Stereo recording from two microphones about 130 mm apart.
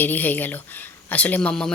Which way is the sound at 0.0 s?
15° left (ahead or behind).